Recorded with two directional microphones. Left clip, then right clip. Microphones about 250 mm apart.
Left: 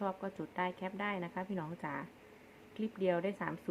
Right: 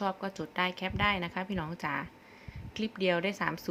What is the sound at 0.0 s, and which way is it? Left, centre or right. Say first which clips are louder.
A woman's voice: right 5 dB; centre.